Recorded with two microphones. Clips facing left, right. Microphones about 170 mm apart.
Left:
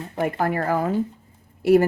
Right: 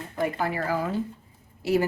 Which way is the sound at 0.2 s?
55° left (ahead or behind).